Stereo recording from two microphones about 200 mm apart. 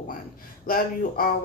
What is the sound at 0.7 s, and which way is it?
Speech, 45° left (ahead or behind).